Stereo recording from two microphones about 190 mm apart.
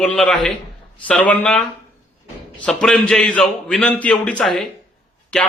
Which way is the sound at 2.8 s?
Centre (ahead or behind).